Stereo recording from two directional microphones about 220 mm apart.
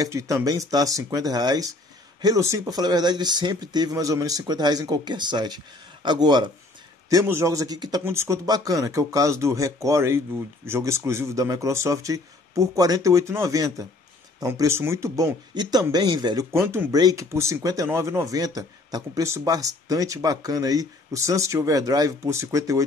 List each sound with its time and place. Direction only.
0.0 s speech: 15° right (ahead or behind)